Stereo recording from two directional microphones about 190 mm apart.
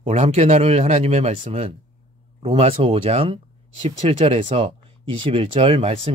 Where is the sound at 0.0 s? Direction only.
40° right (ahead or behind).